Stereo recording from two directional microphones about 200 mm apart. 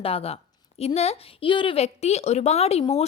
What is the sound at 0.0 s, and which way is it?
A woman's voice, 30° left (ahead or behind).